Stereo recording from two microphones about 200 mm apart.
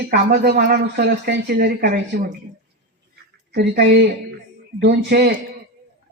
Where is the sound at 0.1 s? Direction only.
55° right (ahead or behind).